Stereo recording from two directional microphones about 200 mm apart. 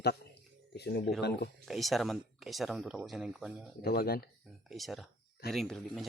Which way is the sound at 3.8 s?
50° left (ahead or behind).